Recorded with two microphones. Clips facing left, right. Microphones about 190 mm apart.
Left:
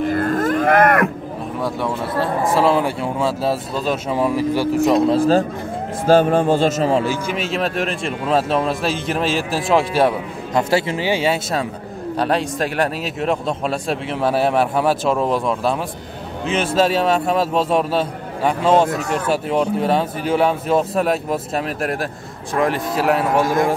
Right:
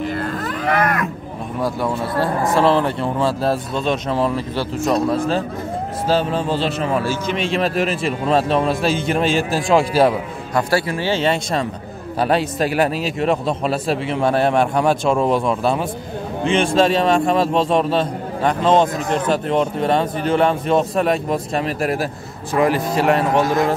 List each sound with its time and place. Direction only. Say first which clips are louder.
0.1 s livestock: left 6 dB; 45° left (ahead or behind)
1.6 s a man's voice: right 2 dB; centre (ahead or behind); by 5.1 s 20° left (ahead or behind)
5.1 s speech: left 5 dB; 35° left (ahead or behind)
6.0 s speech: left 6 dB; 50° left (ahead or behind)
6.9 s speech: left 2 dB; 25° left (ahead or behind)
7.2 s a man's voice: right 2 dB; 5° left (ahead or behind)
10.5 s speech: left 1 dB; 20° left (ahead or behind)
12.2 s a man's voice: right 2 dB; centre (ahead or behind)